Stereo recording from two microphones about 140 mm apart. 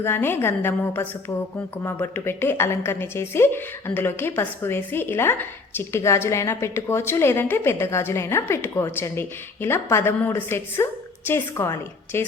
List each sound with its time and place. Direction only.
0.0 s a woman's voice: 15° left (ahead or behind)